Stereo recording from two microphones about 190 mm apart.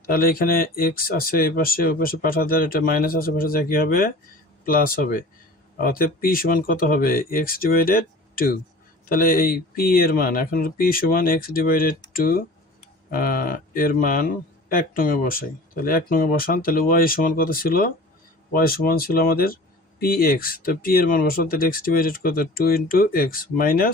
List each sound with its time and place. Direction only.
0.0 s speech: 50° left (ahead or behind)